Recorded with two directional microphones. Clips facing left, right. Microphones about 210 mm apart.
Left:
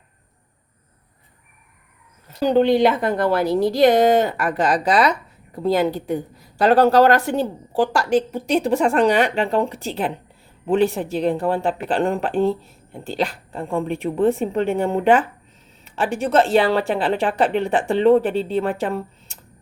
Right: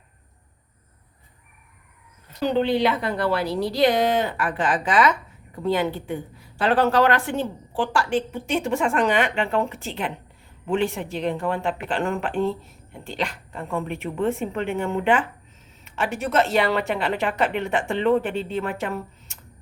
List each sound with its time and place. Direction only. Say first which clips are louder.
2.4 s a woman's voice: left 5 dB; 40° left (ahead or behind)